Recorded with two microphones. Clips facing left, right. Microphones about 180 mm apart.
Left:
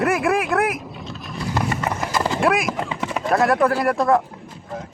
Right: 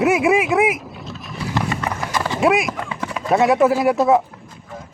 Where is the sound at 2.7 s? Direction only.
20° left (ahead or behind).